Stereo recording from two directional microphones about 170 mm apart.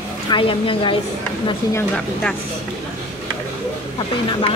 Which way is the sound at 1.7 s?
5° left (ahead or behind).